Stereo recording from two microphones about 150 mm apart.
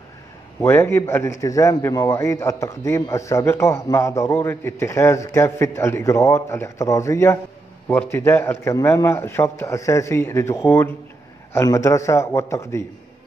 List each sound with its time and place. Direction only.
0.6 s a man's voice: 15° left (ahead or behind)